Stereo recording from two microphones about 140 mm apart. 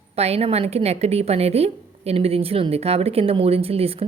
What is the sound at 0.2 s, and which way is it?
A woman's voice, 45° right (ahead or behind).